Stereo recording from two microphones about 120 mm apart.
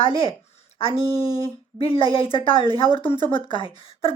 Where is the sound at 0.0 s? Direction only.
45° left (ahead or behind).